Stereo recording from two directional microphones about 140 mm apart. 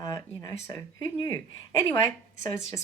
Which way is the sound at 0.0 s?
25° left (ahead or behind).